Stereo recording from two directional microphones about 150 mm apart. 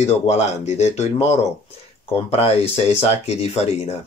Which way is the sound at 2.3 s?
40° left (ahead or behind).